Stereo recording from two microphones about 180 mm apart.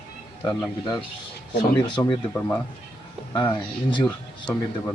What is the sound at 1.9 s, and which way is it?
Speech, 25° left (ahead or behind).